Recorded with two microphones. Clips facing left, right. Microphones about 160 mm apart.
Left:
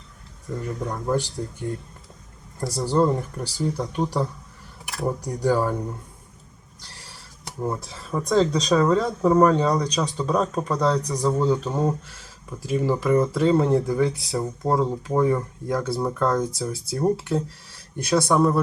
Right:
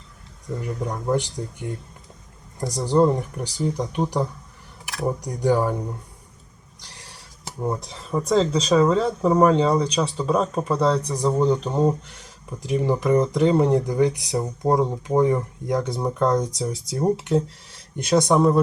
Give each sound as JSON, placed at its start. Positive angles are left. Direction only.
{"t": 0.4, "sound": "speech", "side_deg": 0}
{"t": 1.1, "sound": "speech", "side_deg": -20}
{"t": 4.9, "sound": "speech", "side_deg": 0}
{"t": 5.4, "sound": "speech", "side_deg": -15}
{"t": 7.4, "sound": "a sound", "side_deg": 0}
{"t": 8.1, "sound": "speech", "side_deg": 0}